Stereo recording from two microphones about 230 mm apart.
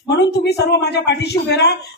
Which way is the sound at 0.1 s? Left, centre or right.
Left.